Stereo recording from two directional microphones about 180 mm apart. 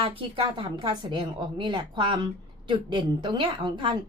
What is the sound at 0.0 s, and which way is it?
A woman's voice, 30° right (ahead or behind).